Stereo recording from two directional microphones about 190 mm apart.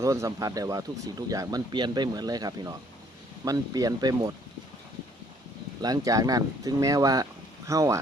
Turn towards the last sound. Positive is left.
turn(degrees=-15)  # may be behind; listen again after turning